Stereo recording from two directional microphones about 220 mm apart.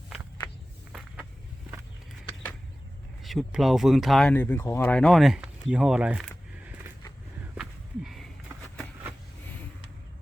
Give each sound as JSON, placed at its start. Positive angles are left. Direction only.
{"t": 0.4, "sound": "walk", "side_deg": 20}
{"t": 0.9, "sound": "vehicle", "side_deg": 0}
{"t": 3.2, "sound": "speech", "side_deg": 0}
{"t": 7.5, "sound": "walk", "side_deg": -5}